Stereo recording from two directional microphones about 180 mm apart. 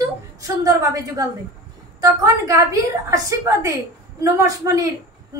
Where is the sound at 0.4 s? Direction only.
20° right (ahead or behind).